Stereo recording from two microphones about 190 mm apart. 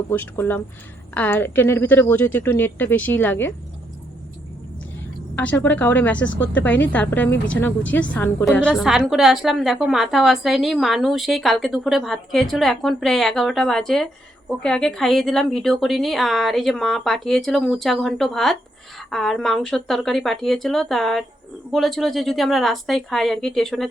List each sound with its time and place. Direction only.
0.1 s a woman's voice: 10° left (ahead or behind)
5.4 s a woman's voice: 10° left (ahead or behind)